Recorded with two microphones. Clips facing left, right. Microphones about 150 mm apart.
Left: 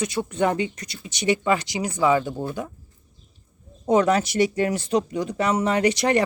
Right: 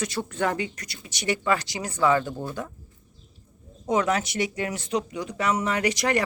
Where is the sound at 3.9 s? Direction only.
35° left (ahead or behind).